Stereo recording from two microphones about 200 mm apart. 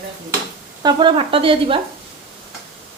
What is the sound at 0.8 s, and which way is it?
Stir, 25° right (ahead or behind).